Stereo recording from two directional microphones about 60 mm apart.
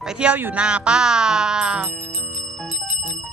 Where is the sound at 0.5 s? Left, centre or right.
Centre.